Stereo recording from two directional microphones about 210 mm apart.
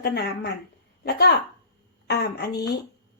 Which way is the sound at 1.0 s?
50° left (ahead or behind).